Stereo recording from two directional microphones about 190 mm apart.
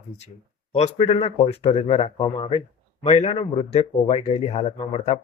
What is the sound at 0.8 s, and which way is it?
Speech, 35° left (ahead or behind).